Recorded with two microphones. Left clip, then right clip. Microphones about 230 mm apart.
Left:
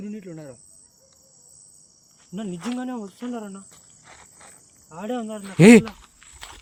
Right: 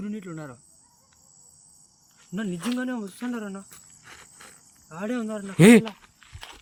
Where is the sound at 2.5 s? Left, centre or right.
Centre.